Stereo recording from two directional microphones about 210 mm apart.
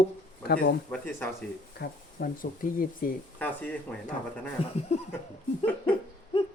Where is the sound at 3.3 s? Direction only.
5° left (ahead or behind).